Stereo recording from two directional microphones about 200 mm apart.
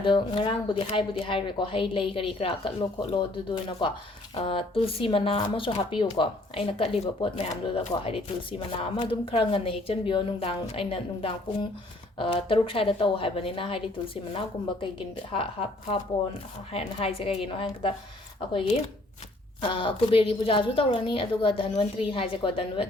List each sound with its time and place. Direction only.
0.0 s speech: 25° left (ahead or behind)
16.7 s speech: 30° left (ahead or behind)
19.6 s speech: 25° left (ahead or behind)